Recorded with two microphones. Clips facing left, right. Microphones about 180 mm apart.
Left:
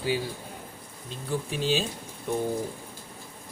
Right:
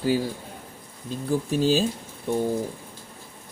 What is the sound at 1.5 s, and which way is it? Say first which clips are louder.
Speech: right 6 dB; 40° right (ahead or behind).